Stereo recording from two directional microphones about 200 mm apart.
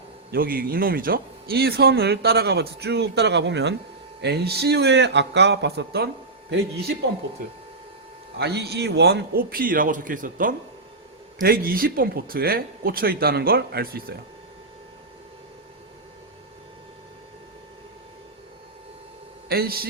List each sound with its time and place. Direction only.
0.3 s a man's voice: 45° right (ahead or behind)
8.4 s a man's voice: 55° right (ahead or behind)
19.5 s a man's voice: 50° right (ahead or behind)